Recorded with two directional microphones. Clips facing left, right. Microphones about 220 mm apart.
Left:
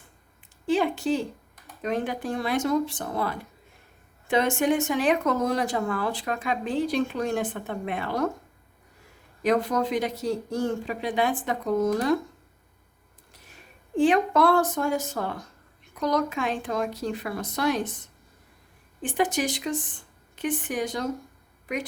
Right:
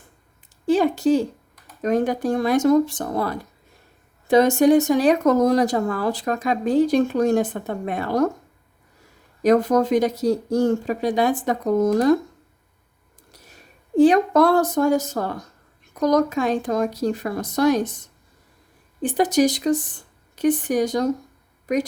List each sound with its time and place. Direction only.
0.7 s a woman's voice: 40° right (ahead or behind)
9.4 s speech: 45° right (ahead or behind)
13.9 s speech: 40° right (ahead or behind)
19.0 s speech: 40° right (ahead or behind)